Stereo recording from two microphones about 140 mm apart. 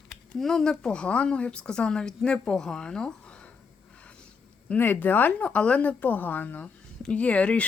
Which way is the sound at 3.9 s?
10° left (ahead or behind).